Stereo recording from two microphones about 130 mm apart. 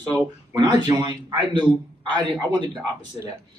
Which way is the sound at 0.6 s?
35° right (ahead or behind).